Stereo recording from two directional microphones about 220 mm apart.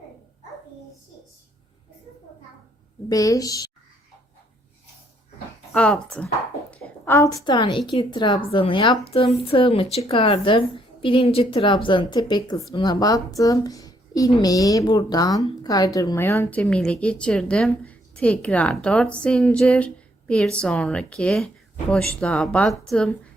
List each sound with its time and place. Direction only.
3.1 s a woman's voice: 15° left (ahead or behind)
5.7 s a woman's voice: 5° left (ahead or behind)